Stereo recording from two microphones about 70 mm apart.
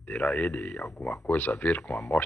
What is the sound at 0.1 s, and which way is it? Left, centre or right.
Speech, centre.